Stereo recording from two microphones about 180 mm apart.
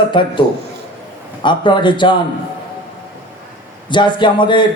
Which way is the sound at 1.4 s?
25° left (ahead or behind).